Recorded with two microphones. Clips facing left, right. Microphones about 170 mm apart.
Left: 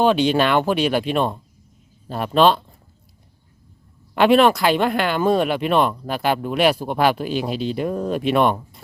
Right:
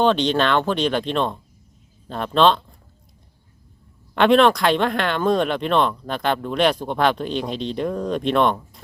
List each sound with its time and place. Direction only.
0.0 s speech: 10° left (ahead or behind)
4.1 s speech: 5° left (ahead or behind)